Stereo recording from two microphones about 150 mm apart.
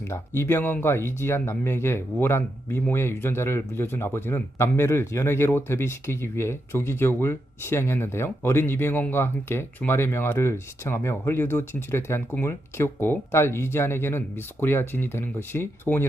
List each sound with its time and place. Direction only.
0.1 s speech: 15° left (ahead or behind)